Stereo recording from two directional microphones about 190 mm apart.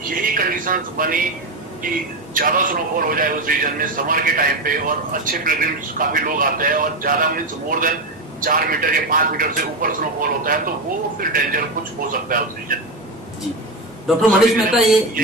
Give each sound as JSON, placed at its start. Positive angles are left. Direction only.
{"t": 0.1, "sound": "speech", "side_deg": -45}
{"t": 2.3, "sound": "a man's voice", "side_deg": -45}
{"t": 14.2, "sound": "a man's voice", "side_deg": 0}